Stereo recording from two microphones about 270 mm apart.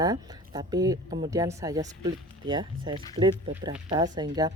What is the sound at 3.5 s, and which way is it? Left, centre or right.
Speech, centre.